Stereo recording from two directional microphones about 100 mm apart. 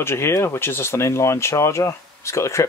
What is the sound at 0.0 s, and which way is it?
Speech, 25° left (ahead or behind).